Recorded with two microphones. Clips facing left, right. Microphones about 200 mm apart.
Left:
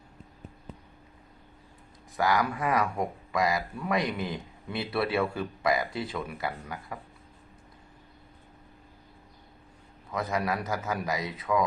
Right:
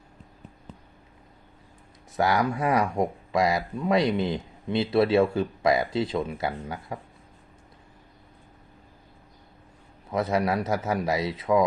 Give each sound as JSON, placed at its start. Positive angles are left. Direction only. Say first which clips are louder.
{"t": 2.1, "sound": "speech", "louder": "right 3 dB", "side_deg": -25}
{"t": 10.1, "sound": "speech", "louder": "right 5 dB", "side_deg": -25}